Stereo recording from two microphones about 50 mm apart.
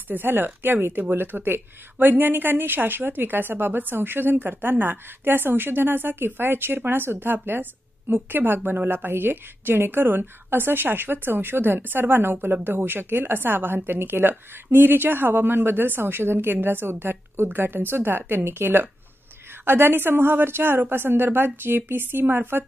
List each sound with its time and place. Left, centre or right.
0.1 s speech: right